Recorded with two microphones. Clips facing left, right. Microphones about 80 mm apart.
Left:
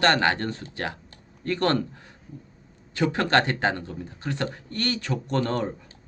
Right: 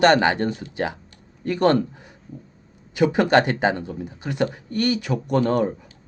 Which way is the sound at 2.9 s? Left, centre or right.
Centre.